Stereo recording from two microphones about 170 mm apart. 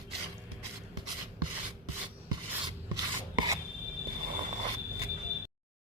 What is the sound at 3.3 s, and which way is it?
Filing, 25° right (ahead or behind).